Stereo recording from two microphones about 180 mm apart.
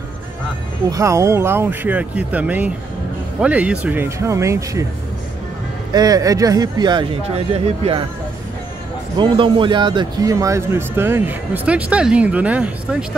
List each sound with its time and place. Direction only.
0.8 s a man's voice: 20° right (ahead or behind)
5.9 s speech: 20° right (ahead or behind)
9.2 s a man's voice: 25° right (ahead or behind); by 13.0 s 5° right (ahead or behind)